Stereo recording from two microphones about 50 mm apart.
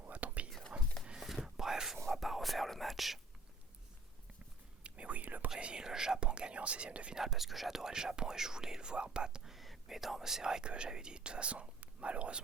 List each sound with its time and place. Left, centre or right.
0.0 s whispering: right
0.7 s a sound: right
1.2 s whispering: centre
4.8 s whispering: right
5.5 s whispering: right
7.2 s whispering: centre
9.8 s speech: centre; by 12.4 s right